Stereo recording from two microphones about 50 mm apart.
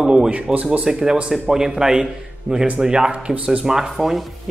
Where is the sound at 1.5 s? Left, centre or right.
Centre.